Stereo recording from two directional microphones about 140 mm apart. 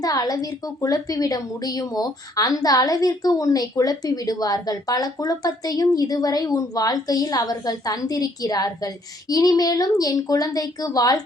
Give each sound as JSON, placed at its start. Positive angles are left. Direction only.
{"t": 0.0, "sound": "a woman's voice", "side_deg": 25}